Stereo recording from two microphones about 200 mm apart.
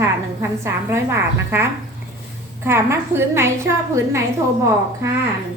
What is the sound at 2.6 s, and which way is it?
A woman's voice, 10° right (ahead or behind).